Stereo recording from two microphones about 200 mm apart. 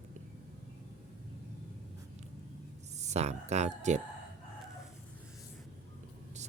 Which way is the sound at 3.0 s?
35° right (ahead or behind).